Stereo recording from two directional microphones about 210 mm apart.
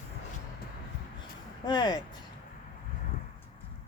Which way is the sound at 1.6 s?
20° left (ahead or behind).